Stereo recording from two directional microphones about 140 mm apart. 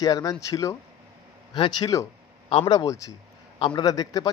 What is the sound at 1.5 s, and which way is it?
Speech, 35° left (ahead or behind).